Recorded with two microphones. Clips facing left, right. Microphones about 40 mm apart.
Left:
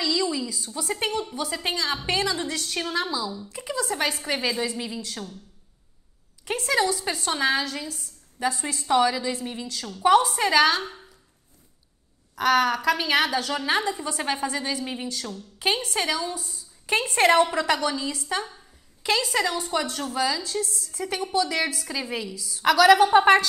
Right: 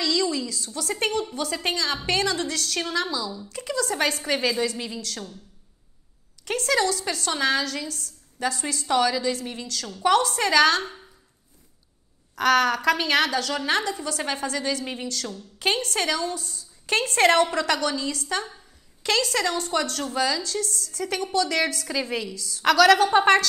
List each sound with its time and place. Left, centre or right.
0.0 s a sound: centre
0.9 s a woman's voice: centre
3.9 s a woman's voice: centre
5.0 s a woman's voice: centre
6.4 s a woman's voice: centre
12.4 s a woman's voice: centre